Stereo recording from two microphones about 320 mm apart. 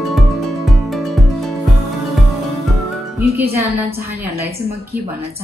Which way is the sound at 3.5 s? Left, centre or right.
Centre.